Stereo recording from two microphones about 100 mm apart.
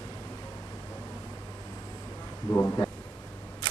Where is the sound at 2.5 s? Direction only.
25° left (ahead or behind).